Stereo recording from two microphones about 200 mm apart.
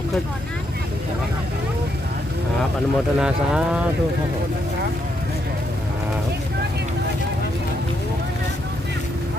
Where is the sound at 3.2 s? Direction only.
5° right (ahead or behind).